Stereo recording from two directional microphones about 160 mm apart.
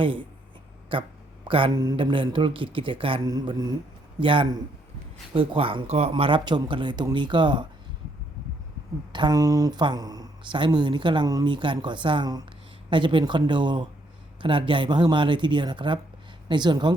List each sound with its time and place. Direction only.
0.9 s speech: 35° right (ahead or behind)
9.1 s speech: 25° right (ahead or behind)